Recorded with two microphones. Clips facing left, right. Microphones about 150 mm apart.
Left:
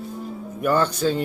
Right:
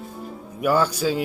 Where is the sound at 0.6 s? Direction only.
10° right (ahead or behind).